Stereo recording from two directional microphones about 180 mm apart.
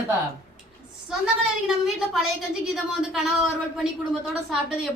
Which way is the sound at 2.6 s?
Centre (ahead or behind).